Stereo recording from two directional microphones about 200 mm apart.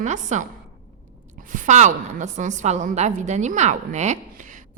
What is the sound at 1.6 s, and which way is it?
A woman's voice, 35° right (ahead or behind).